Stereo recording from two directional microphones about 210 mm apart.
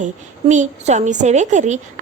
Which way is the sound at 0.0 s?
35° right (ahead or behind).